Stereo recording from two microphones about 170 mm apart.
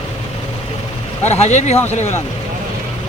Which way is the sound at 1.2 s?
40° left (ahead or behind).